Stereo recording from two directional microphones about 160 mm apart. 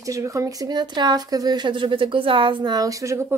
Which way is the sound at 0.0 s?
20° right (ahead or behind).